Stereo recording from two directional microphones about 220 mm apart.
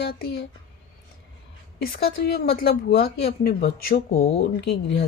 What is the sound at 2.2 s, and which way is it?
A woman's voice, 45° left (ahead or behind).